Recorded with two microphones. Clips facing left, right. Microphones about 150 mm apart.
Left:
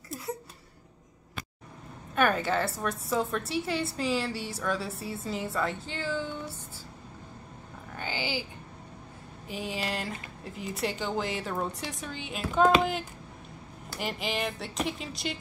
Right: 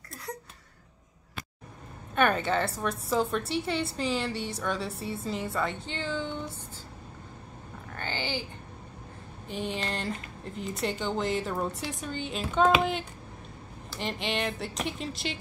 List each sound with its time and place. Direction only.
2.1 s a woman's voice: 5° left (ahead or behind)
7.9 s a sound: 10° left (ahead or behind)
9.5 s a woman's voice: 5° left (ahead or behind)